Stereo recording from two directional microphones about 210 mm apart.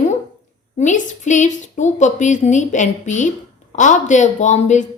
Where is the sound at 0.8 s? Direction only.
35° left (ahead or behind).